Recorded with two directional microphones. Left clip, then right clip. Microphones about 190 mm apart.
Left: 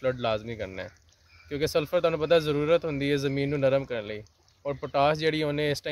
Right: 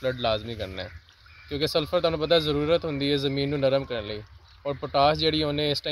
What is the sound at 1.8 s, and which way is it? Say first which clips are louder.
Speech: right 1 dB; 5° left (ahead or behind).